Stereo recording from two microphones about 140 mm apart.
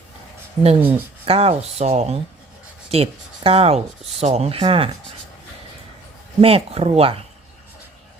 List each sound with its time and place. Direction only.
0.6 s speech: 45° right (ahead or behind)
6.4 s speech: 45° right (ahead or behind)